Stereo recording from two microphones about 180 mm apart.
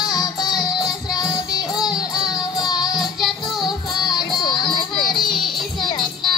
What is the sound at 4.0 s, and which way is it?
Music, 25° left (ahead or behind).